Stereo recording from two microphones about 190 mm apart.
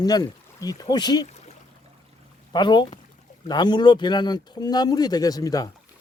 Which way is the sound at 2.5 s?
25° left (ahead or behind).